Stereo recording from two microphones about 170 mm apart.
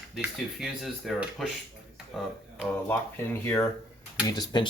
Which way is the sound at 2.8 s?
15° left (ahead or behind).